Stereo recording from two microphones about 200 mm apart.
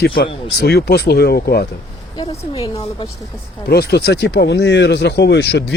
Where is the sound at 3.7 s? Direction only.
55° left (ahead or behind).